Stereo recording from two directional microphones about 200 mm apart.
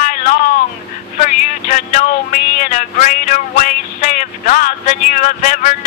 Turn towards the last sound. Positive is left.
turn(degrees=40)  # may be behind; listen again after turning